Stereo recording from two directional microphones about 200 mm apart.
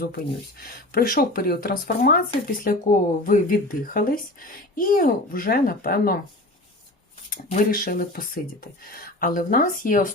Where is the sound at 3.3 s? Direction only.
45° left (ahead or behind).